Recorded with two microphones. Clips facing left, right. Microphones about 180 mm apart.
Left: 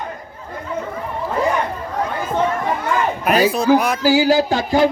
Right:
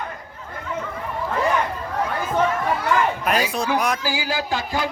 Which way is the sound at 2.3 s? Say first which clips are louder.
Left 1 dB; 20° left (ahead or behind).